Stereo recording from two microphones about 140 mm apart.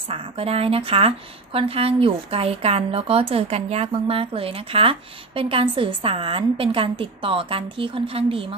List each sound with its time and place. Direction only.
0.1 s a woman's voice: 45° right (ahead or behind)